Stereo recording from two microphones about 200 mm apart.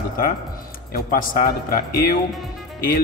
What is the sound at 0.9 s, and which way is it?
Speech, 45° left (ahead or behind).